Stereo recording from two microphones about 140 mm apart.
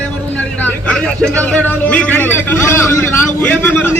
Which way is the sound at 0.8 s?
10° left (ahead or behind).